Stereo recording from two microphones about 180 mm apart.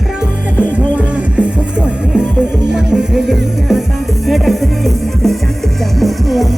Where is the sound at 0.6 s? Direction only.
5° right (ahead or behind).